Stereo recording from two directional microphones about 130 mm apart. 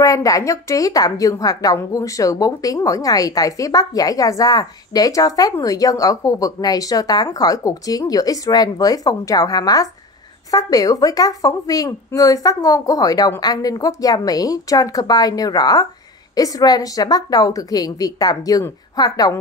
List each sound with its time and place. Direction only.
0.0 s a woman's voice: 25° left (ahead or behind)